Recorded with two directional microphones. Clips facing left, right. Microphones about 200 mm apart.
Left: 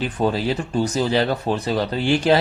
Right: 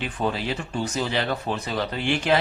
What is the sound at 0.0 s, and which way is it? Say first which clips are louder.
Speech: left 6 dB; 40° left (ahead or behind).